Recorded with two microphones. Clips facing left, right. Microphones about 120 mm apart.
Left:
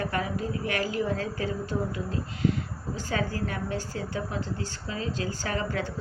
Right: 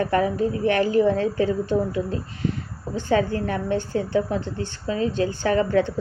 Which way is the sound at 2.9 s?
25° right (ahead or behind).